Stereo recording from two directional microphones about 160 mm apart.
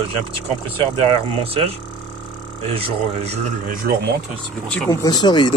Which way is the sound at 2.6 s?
40° right (ahead or behind).